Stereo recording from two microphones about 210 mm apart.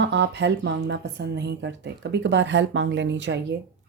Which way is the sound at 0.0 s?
55° right (ahead or behind).